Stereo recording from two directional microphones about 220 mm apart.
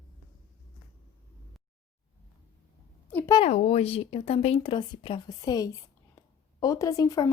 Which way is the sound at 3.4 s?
30° left (ahead or behind).